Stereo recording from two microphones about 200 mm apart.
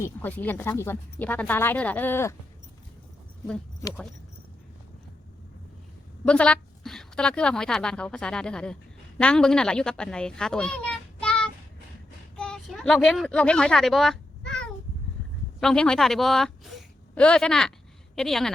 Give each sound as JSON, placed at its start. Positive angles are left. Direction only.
{"t": 0.0, "sound": "speech", "side_deg": 10}
{"t": 6.2, "sound": "a woman's voice", "side_deg": 5}
{"t": 12.4, "sound": "a sound", "side_deg": 0}
{"t": 15.6, "sound": "a woman's voice", "side_deg": 5}